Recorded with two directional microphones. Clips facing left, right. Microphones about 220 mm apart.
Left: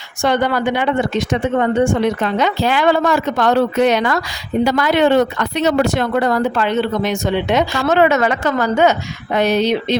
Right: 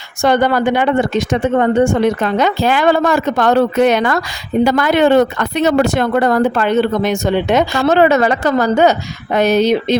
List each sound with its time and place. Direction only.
0.2 s a woman's voice: 45° right (ahead or behind)
7.9 s a woman's voice: 35° right (ahead or behind)